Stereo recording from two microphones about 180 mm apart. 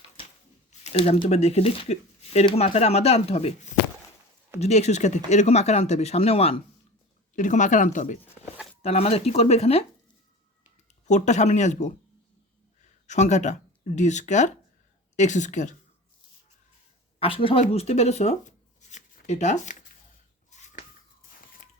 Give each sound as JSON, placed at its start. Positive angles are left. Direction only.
{"t": 0.7, "sound": "a sound", "side_deg": 35}
{"t": 1.2, "sound": "speech", "side_deg": 35}
{"t": 4.6, "sound": "speech", "side_deg": 40}
{"t": 7.3, "sound": "speech", "side_deg": 45}
{"t": 11.0, "sound": "speech", "side_deg": 40}
{"t": 13.1, "sound": "speech", "side_deg": 40}
{"t": 17.2, "sound": "speech", "side_deg": 30}
{"t": 20.5, "sound": "a sound", "side_deg": 40}